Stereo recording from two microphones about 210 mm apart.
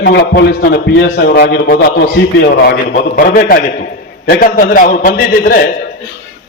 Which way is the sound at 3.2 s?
40° left (ahead or behind).